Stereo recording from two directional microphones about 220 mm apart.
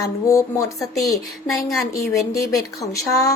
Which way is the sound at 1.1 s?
Centre (ahead or behind).